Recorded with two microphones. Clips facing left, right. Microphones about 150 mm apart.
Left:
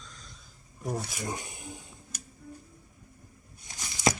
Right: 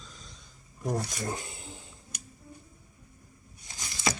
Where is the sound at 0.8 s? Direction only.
5° left (ahead or behind).